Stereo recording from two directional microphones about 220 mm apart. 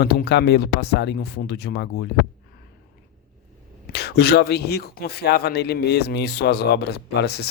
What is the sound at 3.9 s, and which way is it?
Speech, 45° left (ahead or behind).